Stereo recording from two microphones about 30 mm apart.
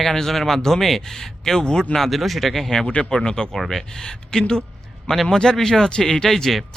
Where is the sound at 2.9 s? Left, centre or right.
Left.